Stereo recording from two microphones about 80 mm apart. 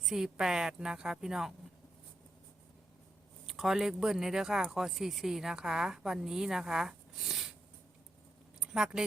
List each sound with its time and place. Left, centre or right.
0.0 s a woman's voice: centre
3.4 s a woman's voice: centre
8.6 s speech: centre